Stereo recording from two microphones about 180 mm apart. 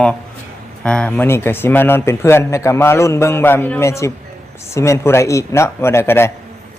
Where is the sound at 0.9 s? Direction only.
5° left (ahead or behind).